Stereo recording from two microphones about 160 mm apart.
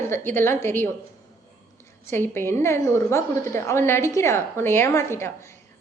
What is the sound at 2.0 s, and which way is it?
A woman's voice, 15° left (ahead or behind).